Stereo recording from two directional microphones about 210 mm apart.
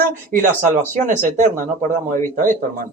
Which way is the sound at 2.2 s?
40° right (ahead or behind).